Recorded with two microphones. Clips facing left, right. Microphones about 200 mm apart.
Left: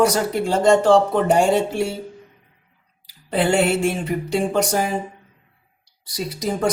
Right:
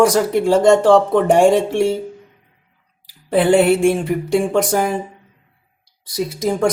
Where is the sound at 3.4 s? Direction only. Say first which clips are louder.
Right 5 dB; 55° right (ahead or behind).